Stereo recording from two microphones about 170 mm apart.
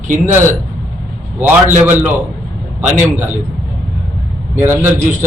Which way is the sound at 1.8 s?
10° right (ahead or behind).